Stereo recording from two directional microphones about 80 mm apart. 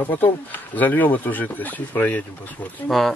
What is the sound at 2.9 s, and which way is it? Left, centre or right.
Speech, centre.